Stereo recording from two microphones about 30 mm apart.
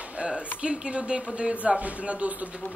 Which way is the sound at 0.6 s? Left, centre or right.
Right.